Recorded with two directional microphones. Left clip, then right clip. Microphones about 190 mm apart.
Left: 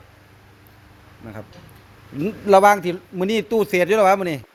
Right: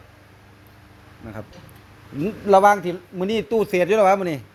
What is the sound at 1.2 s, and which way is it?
Speech, 5° right (ahead or behind).